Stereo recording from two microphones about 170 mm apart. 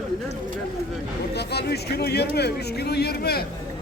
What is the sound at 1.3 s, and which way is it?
Speech, 70° left (ahead or behind).